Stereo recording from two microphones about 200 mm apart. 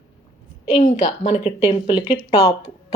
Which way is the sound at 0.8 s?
35° left (ahead or behind).